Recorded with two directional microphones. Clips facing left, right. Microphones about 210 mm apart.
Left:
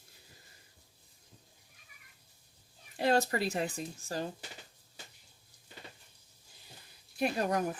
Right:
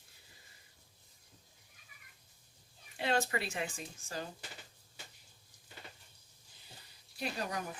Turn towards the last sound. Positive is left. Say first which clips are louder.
# left 8 dB
turn(degrees=50)  # may be behind; listen again after turning